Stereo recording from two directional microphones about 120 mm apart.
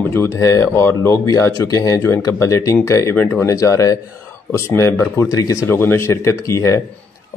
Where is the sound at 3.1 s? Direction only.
10° left (ahead or behind).